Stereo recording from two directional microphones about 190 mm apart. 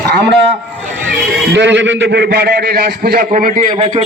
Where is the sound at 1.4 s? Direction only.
70° right (ahead or behind).